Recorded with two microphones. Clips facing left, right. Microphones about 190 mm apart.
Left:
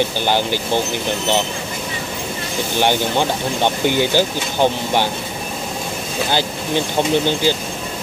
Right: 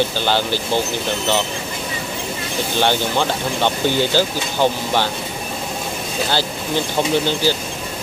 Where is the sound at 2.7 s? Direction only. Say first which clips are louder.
Left 1 dB; 15° left (ahead or behind).